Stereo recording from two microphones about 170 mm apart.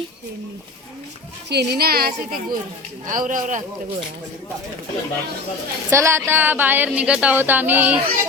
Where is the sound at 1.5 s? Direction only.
70° right (ahead or behind); by 3.6 s 50° right (ahead or behind).